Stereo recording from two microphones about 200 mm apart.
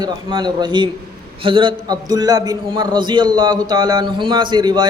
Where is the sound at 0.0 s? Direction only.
20° right (ahead or behind).